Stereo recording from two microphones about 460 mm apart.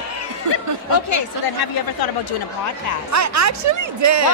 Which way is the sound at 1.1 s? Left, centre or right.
Left.